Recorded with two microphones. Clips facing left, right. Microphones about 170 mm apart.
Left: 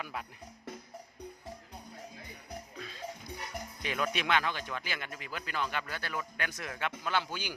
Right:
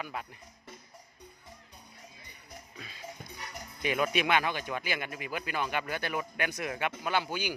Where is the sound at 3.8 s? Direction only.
10° right (ahead or behind).